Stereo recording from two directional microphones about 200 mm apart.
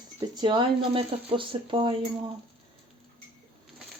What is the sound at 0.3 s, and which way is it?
Speech, 25° right (ahead or behind).